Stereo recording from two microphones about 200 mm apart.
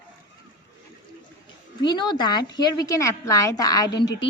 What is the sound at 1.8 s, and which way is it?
A woman's voice, 20° left (ahead or behind).